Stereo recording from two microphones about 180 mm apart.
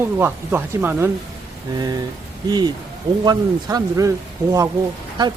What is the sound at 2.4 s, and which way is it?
Speech, 25° right (ahead or behind).